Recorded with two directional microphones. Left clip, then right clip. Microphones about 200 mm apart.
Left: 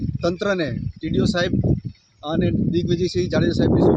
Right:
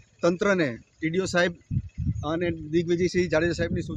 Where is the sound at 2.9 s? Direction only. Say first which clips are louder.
Left 1 dB; centre (ahead or behind).